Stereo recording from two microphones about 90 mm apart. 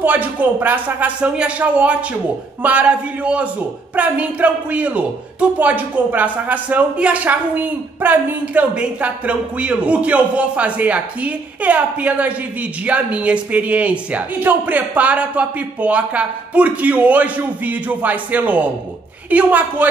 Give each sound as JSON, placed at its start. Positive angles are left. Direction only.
{"t": 0.0, "sound": "a man's voice", "side_deg": -20}